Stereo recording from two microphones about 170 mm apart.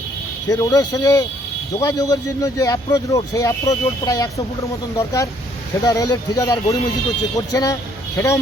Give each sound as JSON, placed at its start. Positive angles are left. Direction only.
{"t": 0.4, "sound": "speech", "side_deg": 20}